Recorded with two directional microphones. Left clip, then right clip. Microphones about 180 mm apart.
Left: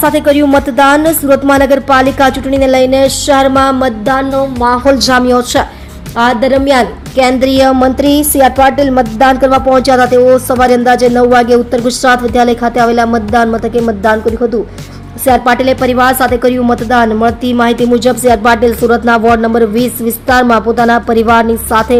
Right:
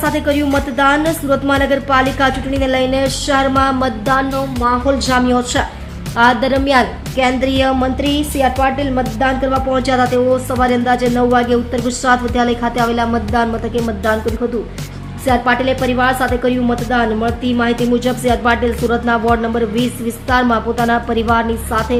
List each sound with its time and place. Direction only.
0.0 s a woman's voice: 35° left (ahead or behind)
4.6 s a woman's voice: 45° left (ahead or behind)
6.1 s a woman's voice: 25° left (ahead or behind)
15.3 s a woman's voice: 35° left (ahead or behind)